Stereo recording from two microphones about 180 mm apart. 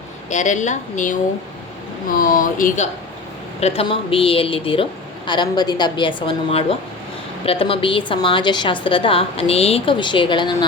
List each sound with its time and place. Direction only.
0.3 s a woman's voice: 40° left (ahead or behind)
3.6 s a woman's voice: 30° left (ahead or behind)